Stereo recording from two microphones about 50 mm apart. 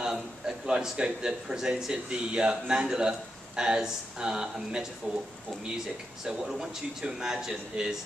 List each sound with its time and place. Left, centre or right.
0.0 s a sound: centre
0.7 s speech: centre
6.2 s speech: centre